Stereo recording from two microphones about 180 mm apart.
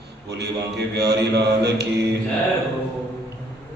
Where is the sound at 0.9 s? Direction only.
70° right (ahead or behind).